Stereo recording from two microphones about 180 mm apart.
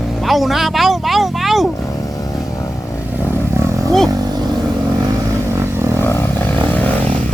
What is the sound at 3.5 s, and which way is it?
Roaring cats, 15° right (ahead or behind).